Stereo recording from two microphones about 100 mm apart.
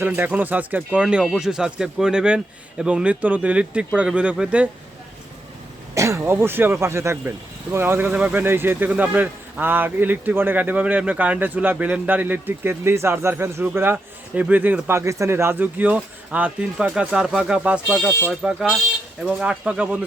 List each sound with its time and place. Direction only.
0.0 s speech: 15° right (ahead or behind)
1.2 s speech: centre (ahead or behind)
5.9 s speech: 30° right (ahead or behind); by 20.1 s 10° right (ahead or behind)